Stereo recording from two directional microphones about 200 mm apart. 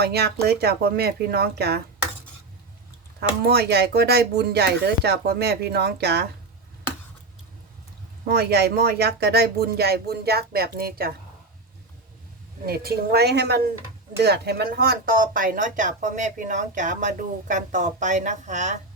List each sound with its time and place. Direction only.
0.0 s speech: 55° right (ahead or behind)
3.2 s speech: 55° right (ahead or behind)
8.3 s speech: 50° right (ahead or behind)
12.6 s speech: 50° right (ahead or behind)